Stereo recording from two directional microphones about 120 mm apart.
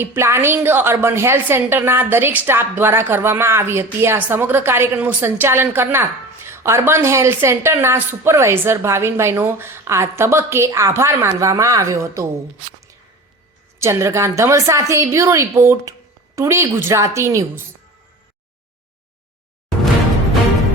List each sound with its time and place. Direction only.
0.0 s a woman's voice: 20° right (ahead or behind)
13.7 s a woman's voice: 25° right (ahead or behind)